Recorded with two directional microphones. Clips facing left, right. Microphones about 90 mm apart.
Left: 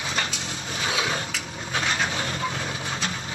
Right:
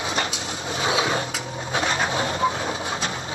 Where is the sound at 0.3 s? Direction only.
25° right (ahead or behind).